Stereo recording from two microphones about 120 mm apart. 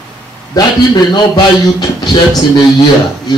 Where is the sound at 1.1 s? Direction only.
35° left (ahead or behind).